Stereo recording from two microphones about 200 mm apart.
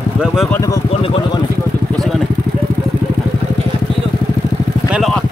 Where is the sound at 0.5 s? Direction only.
15° left (ahead or behind).